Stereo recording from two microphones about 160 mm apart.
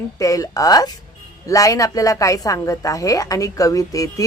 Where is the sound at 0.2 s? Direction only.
20° left (ahead or behind).